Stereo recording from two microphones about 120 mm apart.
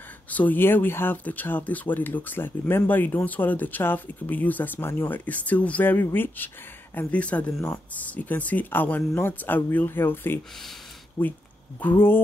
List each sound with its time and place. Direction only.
0.3 s speech: 15° left (ahead or behind)
11.8 s speech: 20° left (ahead or behind)